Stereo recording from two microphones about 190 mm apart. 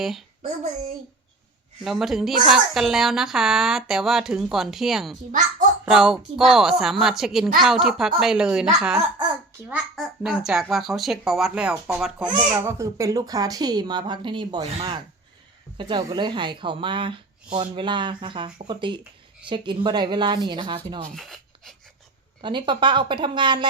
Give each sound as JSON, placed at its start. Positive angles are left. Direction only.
{"t": 1.8, "sound": "a woman's voice", "side_deg": 0}
{"t": 12.2, "sound": "speech", "side_deg": -15}
{"t": 21.2, "sound": "a sound", "side_deg": 0}
{"t": 22.4, "sound": "speech", "side_deg": -25}